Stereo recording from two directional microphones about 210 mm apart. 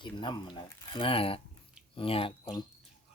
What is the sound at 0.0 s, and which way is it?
Speech, 20° left (ahead or behind).